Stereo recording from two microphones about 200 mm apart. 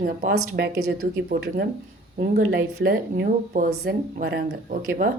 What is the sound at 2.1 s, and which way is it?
A woman's voice, 50° right (ahead or behind).